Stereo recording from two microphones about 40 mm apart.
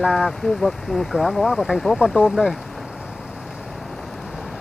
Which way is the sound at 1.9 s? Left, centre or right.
Left.